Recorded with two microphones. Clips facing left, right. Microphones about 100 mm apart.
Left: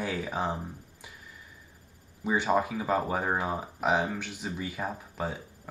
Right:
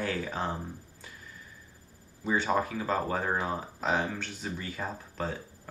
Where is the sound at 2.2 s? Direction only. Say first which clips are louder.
Left 2 dB; 15° left (ahead or behind).